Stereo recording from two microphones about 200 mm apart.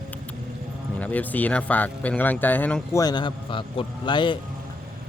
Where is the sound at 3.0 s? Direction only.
25° left (ahead or behind).